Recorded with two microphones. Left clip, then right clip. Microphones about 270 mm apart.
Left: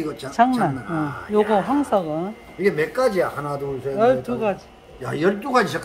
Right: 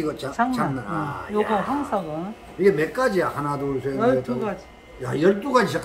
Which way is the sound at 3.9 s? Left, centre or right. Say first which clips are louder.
Left 4 dB; left.